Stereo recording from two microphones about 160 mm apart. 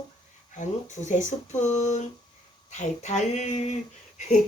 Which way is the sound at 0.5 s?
50° left (ahead or behind).